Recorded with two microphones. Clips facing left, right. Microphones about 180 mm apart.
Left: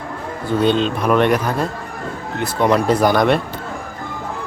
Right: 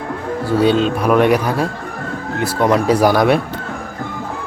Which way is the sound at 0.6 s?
5° right (ahead or behind).